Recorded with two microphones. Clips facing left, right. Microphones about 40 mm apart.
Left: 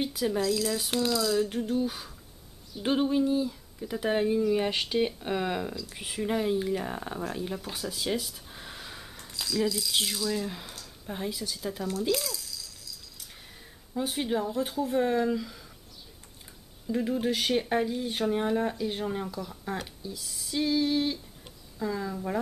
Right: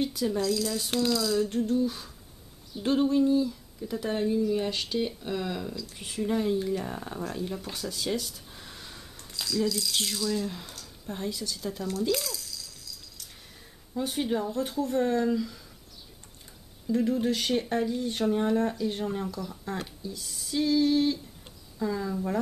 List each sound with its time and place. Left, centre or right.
0.0 s speech: centre
1.5 s speech: centre
2.8 s speech: left
5.9 s speech: centre
7.6 s a sound: centre
9.1 s speech: centre
16.8 s speech: centre